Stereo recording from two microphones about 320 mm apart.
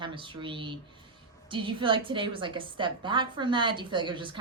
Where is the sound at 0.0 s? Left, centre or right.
Centre.